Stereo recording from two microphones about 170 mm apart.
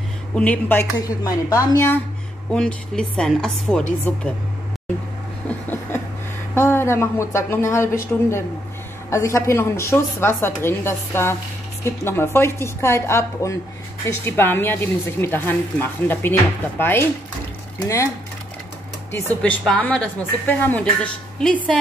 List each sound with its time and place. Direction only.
0.4 s speech: 10° left (ahead or behind)
2.5 s speech: 5° left (ahead or behind)
5.7 s a sound: 15° left (ahead or behind)
6.5 s speech: 15° left (ahead or behind)
19.4 s speech: 5° left (ahead or behind)